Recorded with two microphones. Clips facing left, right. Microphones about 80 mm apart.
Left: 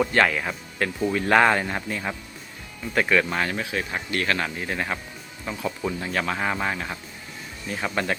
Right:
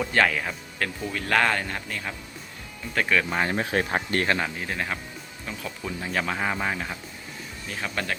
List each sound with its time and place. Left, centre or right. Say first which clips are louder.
0.0 s speech: left 2 dB; centre
2.9 s speech: left 3 dB; centre
3.5 s speech: right 3 dB; right
4.4 s speech: left 1 dB; centre
6.0 s speech: right 1 dB; centre
7.9 s speech: left 4 dB; centre